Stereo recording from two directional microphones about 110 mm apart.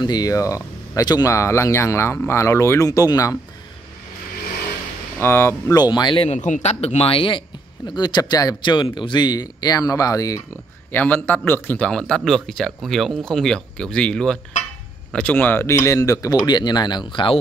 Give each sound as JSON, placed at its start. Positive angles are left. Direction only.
{"t": 0.0, "sound": "speech", "side_deg": 35}
{"t": 5.2, "sound": "speech", "side_deg": 20}
{"t": 5.8, "sound": "speech", "side_deg": 40}
{"t": 6.2, "sound": "a man's voice", "side_deg": 85}
{"t": 8.7, "sound": "speech", "side_deg": 50}
{"t": 10.9, "sound": "a man's voice", "side_deg": 20}
{"t": 15.7, "sound": "speech", "side_deg": 30}